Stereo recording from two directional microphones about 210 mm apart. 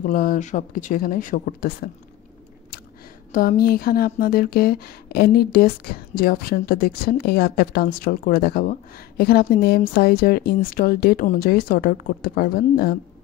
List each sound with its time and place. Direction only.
0.0 s speech: 40° left (ahead or behind)
3.3 s speech: 40° left (ahead or behind)